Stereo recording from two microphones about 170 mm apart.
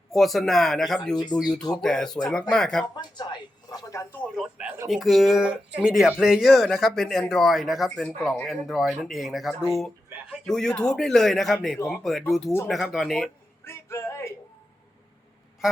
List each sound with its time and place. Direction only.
0.1 s speech: centre (ahead or behind)
1.1 s speech: 25° left (ahead or behind)
1.4 s speech: 5° right (ahead or behind)
2.8 s speech: 25° left (ahead or behind)
4.4 s speech: 5° right (ahead or behind)
13.7 s music: 15° left (ahead or behind)